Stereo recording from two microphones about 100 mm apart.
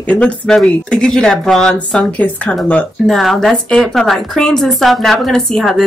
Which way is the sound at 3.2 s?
Centre (ahead or behind).